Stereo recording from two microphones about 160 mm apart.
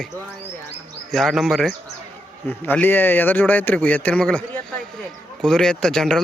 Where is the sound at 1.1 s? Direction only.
Centre (ahead or behind).